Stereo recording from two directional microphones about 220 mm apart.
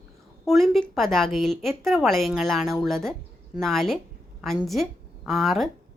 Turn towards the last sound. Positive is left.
turn(degrees=0)  # may be behind; listen again after turning